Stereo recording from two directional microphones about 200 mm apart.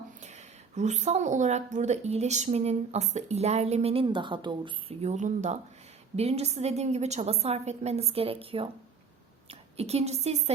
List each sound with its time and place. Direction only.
0.2 s a woman's voice: 35° right (ahead or behind)